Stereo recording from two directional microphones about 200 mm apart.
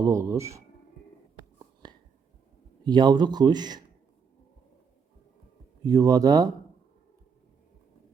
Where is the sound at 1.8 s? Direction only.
20° right (ahead or behind).